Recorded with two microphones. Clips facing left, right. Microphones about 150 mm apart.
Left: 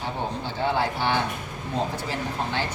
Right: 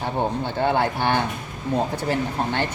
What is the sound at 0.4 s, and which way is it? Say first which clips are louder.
Speech: right 2 dB; 55° right (ahead or behind).